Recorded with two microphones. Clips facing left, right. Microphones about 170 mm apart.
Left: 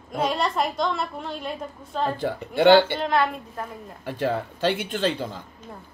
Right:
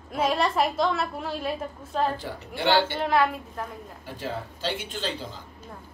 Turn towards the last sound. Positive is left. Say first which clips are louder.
# left 7 dB
turn(degrees=60)  # may be behind; listen again after turning